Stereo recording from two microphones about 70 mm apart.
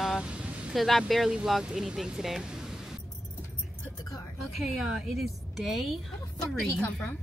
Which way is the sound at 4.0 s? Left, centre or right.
Left.